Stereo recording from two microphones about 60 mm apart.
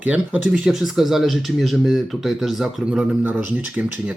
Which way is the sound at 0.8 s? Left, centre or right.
Centre.